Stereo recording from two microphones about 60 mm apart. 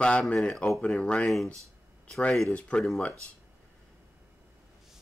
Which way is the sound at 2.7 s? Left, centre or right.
Centre.